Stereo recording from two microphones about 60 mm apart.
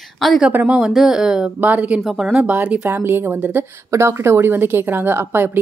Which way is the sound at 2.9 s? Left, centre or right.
Right.